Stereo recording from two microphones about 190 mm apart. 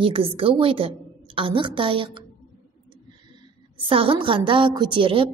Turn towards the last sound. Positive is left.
turn(degrees=-25)  # may be behind; listen again after turning